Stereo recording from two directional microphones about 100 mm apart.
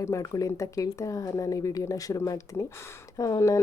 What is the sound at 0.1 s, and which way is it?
Speech, 35° left (ahead or behind).